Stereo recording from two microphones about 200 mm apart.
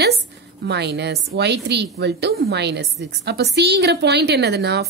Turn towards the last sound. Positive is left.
turn(degrees=-55)  # may be behind; listen again after turning